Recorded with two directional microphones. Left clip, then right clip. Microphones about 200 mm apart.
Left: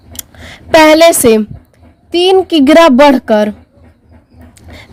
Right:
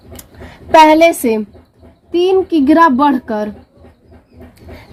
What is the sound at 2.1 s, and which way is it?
A woman's voice, 60° left (ahead or behind).